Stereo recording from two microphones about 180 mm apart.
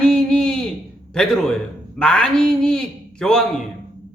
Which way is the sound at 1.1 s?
5° left (ahead or behind).